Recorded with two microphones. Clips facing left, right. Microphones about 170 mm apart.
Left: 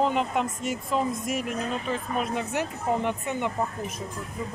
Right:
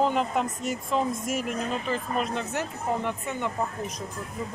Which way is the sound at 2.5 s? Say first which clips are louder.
Left 2 dB; 15° left (ahead or behind).